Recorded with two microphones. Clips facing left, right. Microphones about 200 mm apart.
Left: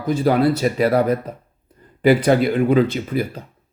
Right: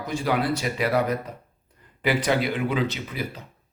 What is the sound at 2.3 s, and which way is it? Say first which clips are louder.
Speech: left 8 dB; 45° left (ahead or behind).